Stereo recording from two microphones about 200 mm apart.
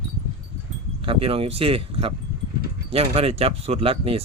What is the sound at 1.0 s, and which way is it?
Speech, 25° right (ahead or behind).